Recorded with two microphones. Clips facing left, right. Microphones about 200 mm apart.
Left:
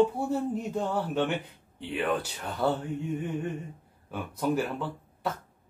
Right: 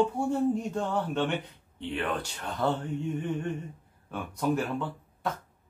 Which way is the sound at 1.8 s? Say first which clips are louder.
Left 2 dB; 5° left (ahead or behind).